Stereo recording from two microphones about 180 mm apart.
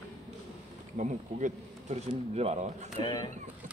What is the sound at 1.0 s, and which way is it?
Speech, 40° right (ahead or behind).